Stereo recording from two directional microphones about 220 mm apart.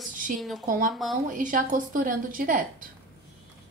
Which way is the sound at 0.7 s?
40° right (ahead or behind).